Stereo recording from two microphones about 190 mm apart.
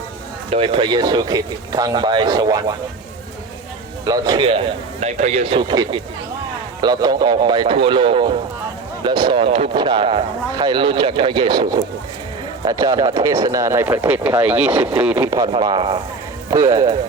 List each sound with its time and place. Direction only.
0.5 s speech: 30° right (ahead or behind)
4.0 s speech: 20° right (ahead or behind)
15.5 s speech: 25° right (ahead or behind)